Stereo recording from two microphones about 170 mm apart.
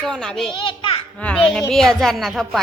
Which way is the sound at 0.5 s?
30° left (ahead or behind).